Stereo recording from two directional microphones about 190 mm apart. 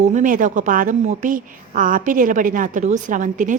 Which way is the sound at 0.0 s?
40° right (ahead or behind).